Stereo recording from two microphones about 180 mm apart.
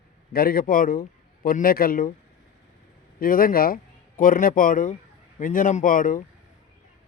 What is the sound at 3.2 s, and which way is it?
A man's voice, 55° left (ahead or behind).